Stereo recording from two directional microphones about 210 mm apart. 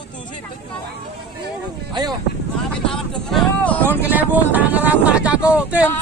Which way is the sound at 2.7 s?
5° left (ahead or behind).